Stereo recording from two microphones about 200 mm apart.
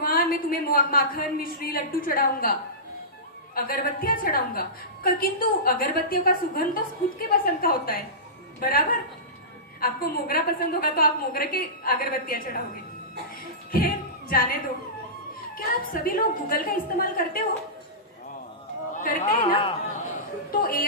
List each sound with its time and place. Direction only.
0.0 s a woman's voice: 45° left (ahead or behind)
13.7 s music: 45° left (ahead or behind)
15.5 s a woman's voice: 45° left (ahead or behind)
18.9 s speech: 40° left (ahead or behind)
19.5 s speech: 25° left (ahead or behind)
20.5 s a woman's voice: 45° left (ahead or behind)